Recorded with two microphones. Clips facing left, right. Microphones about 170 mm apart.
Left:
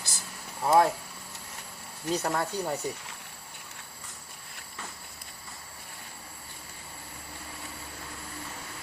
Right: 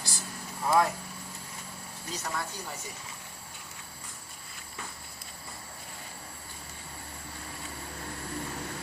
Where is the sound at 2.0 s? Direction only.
60° left (ahead or behind).